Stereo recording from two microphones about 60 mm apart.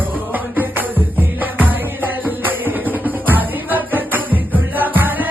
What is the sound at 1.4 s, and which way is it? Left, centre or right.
Music, right.